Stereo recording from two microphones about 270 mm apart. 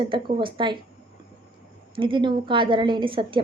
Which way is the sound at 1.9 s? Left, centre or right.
Centre.